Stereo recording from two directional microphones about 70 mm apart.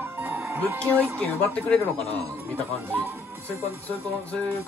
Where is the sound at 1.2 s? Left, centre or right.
Centre.